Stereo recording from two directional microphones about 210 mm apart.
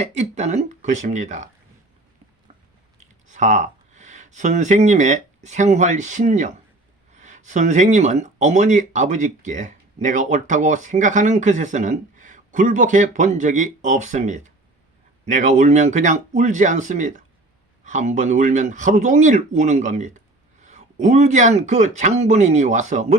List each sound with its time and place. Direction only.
0.0 s speech: 35° right (ahead or behind)
3.0 s speech: 35° right (ahead or behind)